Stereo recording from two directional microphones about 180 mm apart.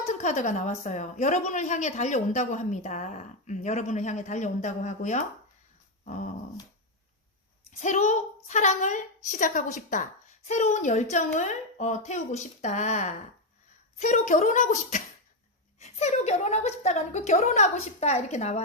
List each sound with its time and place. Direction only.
0.0 s a woman's voice: 40° left (ahead or behind)
7.8 s a woman's voice: 40° left (ahead or behind)